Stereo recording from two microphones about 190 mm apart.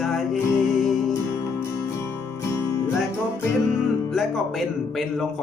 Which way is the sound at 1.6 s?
15° left (ahead or behind).